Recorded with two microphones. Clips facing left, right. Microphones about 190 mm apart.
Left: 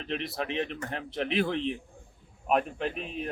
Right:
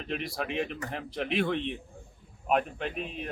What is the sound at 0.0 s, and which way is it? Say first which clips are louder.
A man's voice: left 1 dB; centre (ahead or behind).